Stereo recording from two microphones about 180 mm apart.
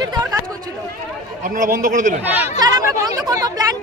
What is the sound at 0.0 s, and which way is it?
Chatter, 20° right (ahead or behind).